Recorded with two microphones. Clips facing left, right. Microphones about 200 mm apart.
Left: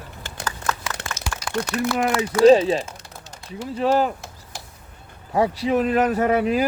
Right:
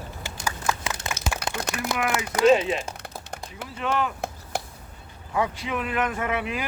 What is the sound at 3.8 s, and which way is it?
Speech, 35° left (ahead or behind).